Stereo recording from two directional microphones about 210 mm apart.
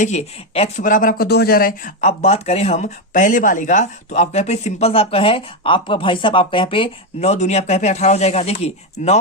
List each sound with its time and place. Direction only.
0.0 s speech: 30° left (ahead or behind)